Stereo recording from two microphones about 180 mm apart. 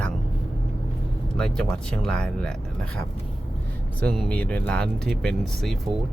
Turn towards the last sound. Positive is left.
turn(degrees=0)  # may be behind; listen again after turning